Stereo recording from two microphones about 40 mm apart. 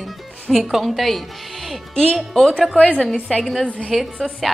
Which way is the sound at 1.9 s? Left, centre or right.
Left.